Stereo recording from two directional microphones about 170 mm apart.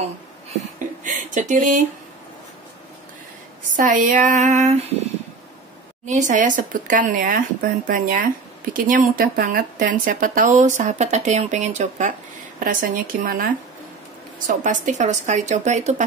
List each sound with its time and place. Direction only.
1.0 s a sound: 50° right (ahead or behind)
3.7 s speech: 50° right (ahead or behind)
6.0 s speech: 45° right (ahead or behind)
12.5 s speech: 55° right (ahead or behind)
14.5 s speech: 50° right (ahead or behind)